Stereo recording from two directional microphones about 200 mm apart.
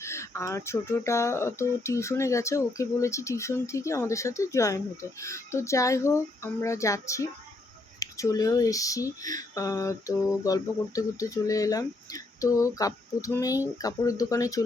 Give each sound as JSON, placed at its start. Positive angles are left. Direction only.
{"t": 0.0, "sound": "speech", "side_deg": 15}